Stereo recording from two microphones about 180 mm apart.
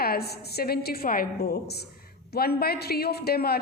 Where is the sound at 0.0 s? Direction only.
60° left (ahead or behind).